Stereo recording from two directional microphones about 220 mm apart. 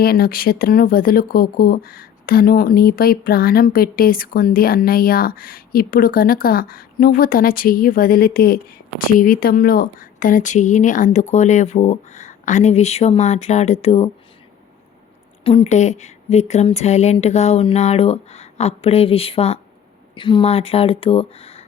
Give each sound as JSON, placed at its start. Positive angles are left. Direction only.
{"t": 0.0, "sound": "speech", "side_deg": 45}
{"t": 15.4, "sound": "speech", "side_deg": 25}